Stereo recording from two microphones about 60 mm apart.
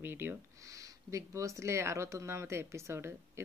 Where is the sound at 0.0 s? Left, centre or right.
Right.